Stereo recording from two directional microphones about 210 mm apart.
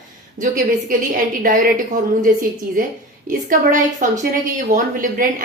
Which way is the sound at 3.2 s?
40° right (ahead or behind).